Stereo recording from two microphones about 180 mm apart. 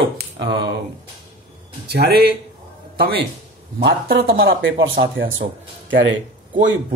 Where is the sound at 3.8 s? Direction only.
75° right (ahead or behind); by 5.3 s 55° right (ahead or behind).